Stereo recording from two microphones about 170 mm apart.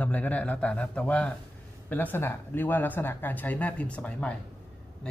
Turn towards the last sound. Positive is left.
turn(degrees=5)  # may be behind; listen again after turning